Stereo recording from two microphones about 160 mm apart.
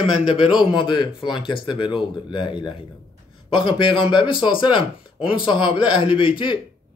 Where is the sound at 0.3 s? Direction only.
35° left (ahead or behind).